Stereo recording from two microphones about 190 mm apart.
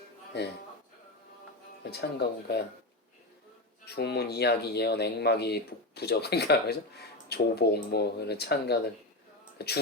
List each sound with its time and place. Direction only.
1.8 s speech: 60° left (ahead or behind)
3.8 s speech: 60° left (ahead or behind)